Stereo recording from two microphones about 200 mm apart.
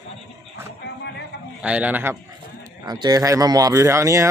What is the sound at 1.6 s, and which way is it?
Speech, 5° right (ahead or behind).